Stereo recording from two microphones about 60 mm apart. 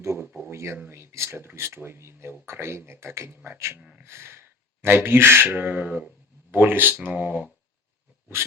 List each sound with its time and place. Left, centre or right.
0.0 s a sound: right
0.8 s speech: right
3.8 s speech: centre
4.0 s speech: right
5.5 s speech: right